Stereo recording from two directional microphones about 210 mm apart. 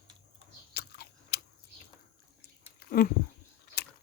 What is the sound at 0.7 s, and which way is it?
Biting, 50° left (ahead or behind).